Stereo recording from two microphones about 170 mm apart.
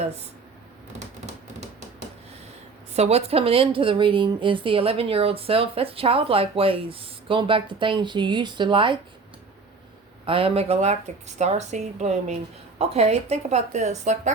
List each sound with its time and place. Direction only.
2.9 s a woman's voice: 40° right (ahead or behind)
10.2 s a woman's voice: 35° right (ahead or behind)